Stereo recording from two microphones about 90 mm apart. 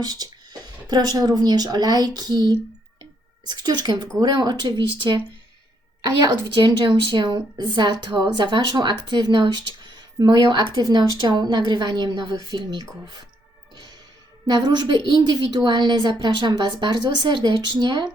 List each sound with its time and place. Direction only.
0.0 s speech: 45° right (ahead or behind)
3.0 s a sound: 50° right (ahead or behind)
4.2 s speech: 50° right (ahead or behind)
6.0 s a woman's voice: 45° right (ahead or behind)
6.5 s speech: 60° right (ahead or behind)
14.4 s speech: 50° right (ahead or behind)